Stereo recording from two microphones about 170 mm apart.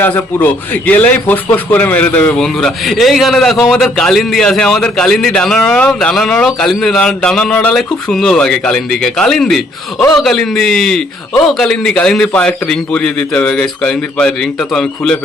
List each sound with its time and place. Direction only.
0.0 s a man's voice: 10° left (ahead or behind)